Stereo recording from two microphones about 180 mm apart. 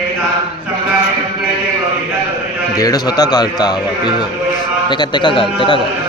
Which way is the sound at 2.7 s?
20° left (ahead or behind).